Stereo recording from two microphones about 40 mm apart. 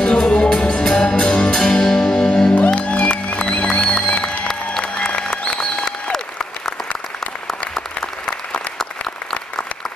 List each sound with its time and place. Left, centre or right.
0.3 s music: left
2.5 s music: left; by 4.1 s centre
4.1 s music: left